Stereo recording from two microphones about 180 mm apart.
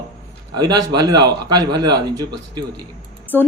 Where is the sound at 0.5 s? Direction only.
20° right (ahead or behind).